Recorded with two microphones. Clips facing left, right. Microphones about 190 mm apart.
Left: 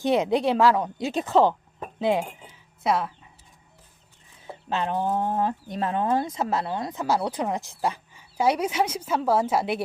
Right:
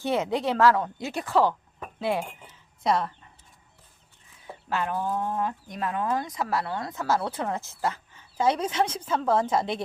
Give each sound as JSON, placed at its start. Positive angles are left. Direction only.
{"t": 0.0, "sound": "speech", "side_deg": 15}
{"t": 2.8, "sound": "speech", "side_deg": 5}
{"t": 4.4, "sound": "speech", "side_deg": 25}